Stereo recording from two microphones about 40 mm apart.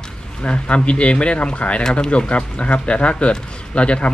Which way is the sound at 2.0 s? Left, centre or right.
Left.